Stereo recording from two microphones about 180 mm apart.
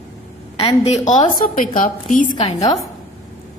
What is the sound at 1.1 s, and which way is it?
A woman's voice, 45° left (ahead or behind).